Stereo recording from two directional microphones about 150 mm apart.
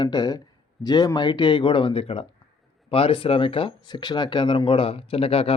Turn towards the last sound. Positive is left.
turn(degrees=40)  # may be behind; listen again after turning